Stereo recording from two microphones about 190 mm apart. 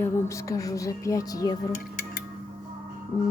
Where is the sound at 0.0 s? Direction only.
15° left (ahead or behind).